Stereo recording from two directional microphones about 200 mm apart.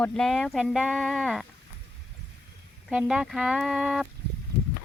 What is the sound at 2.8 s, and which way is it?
Speech, 5° right (ahead or behind).